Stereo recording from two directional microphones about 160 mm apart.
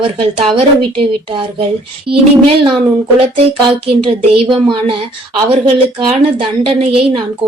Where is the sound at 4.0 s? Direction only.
35° right (ahead or behind).